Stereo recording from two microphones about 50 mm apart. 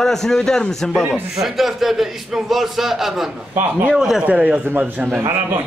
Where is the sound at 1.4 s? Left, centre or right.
Centre.